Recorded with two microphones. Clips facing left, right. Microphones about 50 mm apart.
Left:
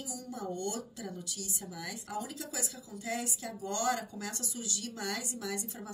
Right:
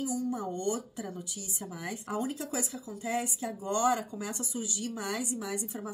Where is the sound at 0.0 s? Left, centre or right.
Right.